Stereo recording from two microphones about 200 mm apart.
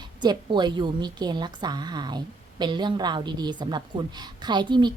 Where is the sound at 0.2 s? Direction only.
20° right (ahead or behind).